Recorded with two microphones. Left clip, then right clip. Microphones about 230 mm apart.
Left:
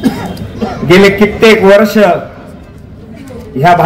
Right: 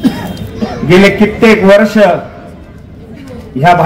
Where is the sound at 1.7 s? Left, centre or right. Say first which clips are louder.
Even; left.